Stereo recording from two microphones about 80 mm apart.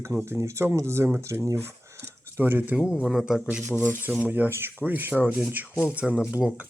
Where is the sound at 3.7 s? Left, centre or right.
Left.